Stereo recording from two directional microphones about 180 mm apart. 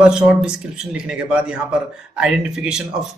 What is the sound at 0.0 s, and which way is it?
Speech, 5° right (ahead or behind).